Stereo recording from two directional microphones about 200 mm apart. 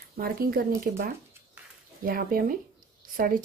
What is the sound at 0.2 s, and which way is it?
A woman's voice, 45° right (ahead or behind).